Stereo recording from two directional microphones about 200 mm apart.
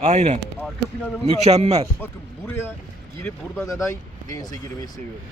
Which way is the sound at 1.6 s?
30° right (ahead or behind).